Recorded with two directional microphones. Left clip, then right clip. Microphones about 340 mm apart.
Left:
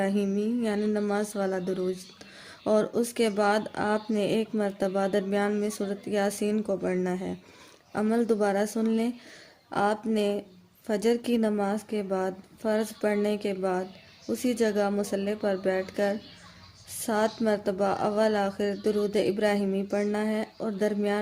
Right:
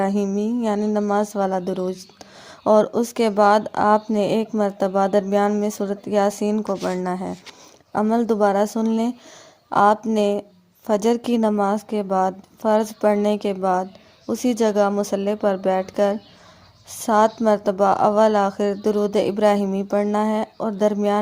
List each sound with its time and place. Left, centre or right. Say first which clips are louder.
0.2 s a woman's voice: right 6 dB; centre